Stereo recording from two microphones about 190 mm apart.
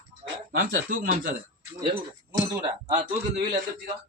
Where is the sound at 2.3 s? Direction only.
20° right (ahead or behind).